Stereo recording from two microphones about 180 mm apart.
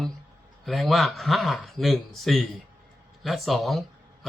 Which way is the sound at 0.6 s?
Centre (ahead or behind).